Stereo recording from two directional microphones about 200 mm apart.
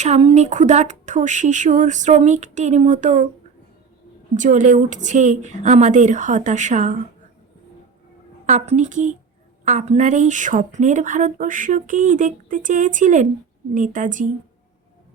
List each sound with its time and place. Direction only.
0.0 s a woman's voice: 30° right (ahead or behind)
4.4 s a woman's voice: 40° right (ahead or behind)
8.4 s a woman's voice: 35° right (ahead or behind)